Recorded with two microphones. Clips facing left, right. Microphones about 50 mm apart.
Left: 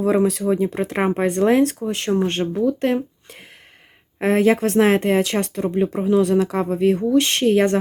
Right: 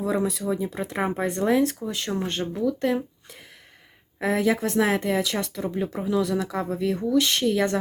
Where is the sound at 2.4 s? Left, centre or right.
Left.